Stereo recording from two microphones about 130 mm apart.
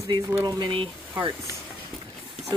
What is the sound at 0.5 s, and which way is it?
Speech, 35° right (ahead or behind).